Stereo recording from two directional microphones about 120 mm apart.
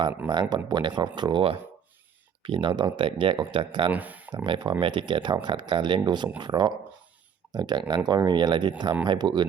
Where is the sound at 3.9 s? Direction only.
15° right (ahead or behind).